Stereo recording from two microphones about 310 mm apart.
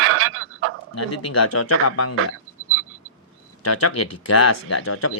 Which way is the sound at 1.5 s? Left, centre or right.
Left.